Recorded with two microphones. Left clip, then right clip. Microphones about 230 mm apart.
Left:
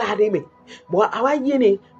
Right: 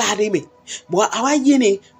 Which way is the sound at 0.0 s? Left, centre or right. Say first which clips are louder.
Right 1 dB; right.